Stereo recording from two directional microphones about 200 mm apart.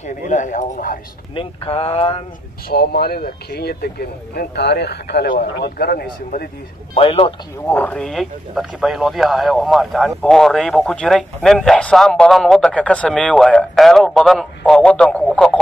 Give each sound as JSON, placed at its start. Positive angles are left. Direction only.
{"t": 0.0, "sound": "speech", "side_deg": 40}
{"t": 1.3, "sound": "speech", "side_deg": 25}
{"t": 2.7, "sound": "speech", "side_deg": 50}
{"t": 7.0, "sound": "speech", "side_deg": 30}
{"t": 7.6, "sound": "speech", "side_deg": 10}